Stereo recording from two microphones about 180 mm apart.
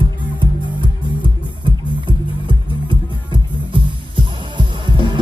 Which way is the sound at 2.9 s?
30° right (ahead or behind).